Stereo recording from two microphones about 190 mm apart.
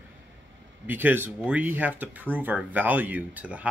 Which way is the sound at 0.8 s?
10° right (ahead or behind).